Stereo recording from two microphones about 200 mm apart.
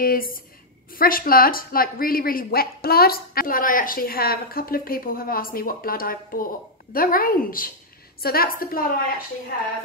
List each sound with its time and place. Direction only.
0.0 s speech: 45° left (ahead or behind)